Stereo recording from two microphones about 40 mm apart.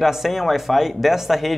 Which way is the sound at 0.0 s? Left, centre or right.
Centre.